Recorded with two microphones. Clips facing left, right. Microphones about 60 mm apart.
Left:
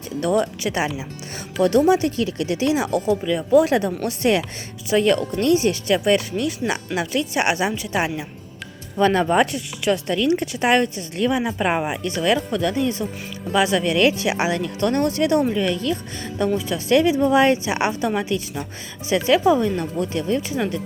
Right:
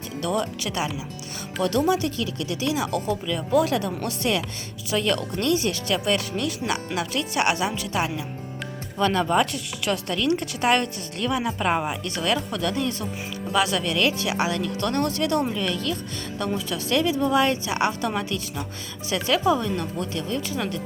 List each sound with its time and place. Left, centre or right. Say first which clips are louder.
0.2 s speech: left 6 dB; left
1.9 s speech: left 5 dB; left
9.8 s speech: left 5 dB; centre